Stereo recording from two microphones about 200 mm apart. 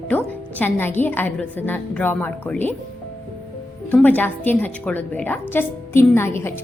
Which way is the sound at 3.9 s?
10° left (ahead or behind).